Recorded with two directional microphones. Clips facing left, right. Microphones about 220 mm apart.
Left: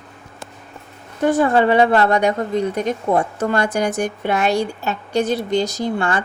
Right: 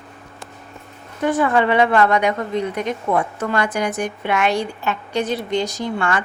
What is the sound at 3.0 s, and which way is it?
Speech, 30° left (ahead or behind).